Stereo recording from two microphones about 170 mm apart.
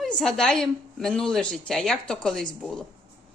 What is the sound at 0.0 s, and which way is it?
A woman's voice, centre (ahead or behind).